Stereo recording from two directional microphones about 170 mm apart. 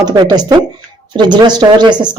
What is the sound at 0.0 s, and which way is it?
Speech, 25° right (ahead or behind).